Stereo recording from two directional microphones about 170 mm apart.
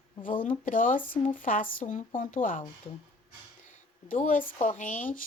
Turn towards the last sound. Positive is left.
turn(degrees=50)  # may be behind; listen again after turning